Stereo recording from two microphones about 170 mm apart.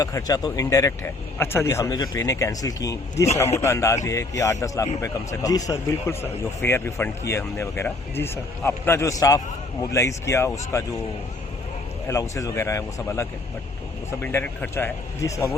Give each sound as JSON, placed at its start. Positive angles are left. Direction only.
{"t": 0.0, "sound": "speech", "side_deg": 20}
{"t": 12.0, "sound": "speech", "side_deg": 20}